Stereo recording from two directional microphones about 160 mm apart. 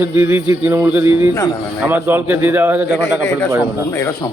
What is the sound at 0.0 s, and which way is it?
A man's voice, 10° right (ahead or behind).